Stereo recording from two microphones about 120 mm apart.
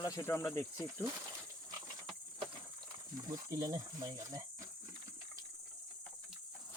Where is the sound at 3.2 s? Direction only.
30° right (ahead or behind).